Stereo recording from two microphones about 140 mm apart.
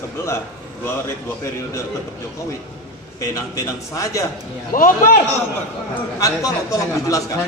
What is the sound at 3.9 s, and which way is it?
Speech, 25° left (ahead or behind).